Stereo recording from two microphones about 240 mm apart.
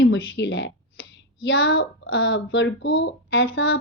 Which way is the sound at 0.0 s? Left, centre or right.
Left.